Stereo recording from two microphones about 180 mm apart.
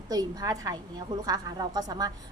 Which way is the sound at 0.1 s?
20° right (ahead or behind).